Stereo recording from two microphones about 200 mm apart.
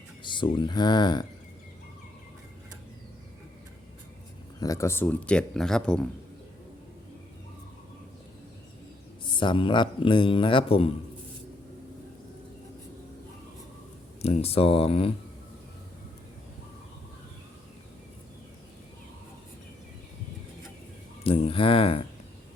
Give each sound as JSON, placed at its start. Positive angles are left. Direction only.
{"t": 0.2, "sound": "a man's voice", "side_deg": 25}
{"t": 4.6, "sound": "speech", "side_deg": 15}
{"t": 9.2, "sound": "a man's voice", "side_deg": 25}
{"t": 14.2, "sound": "a man's voice", "side_deg": 30}
{"t": 21.2, "sound": "a man's voice", "side_deg": 30}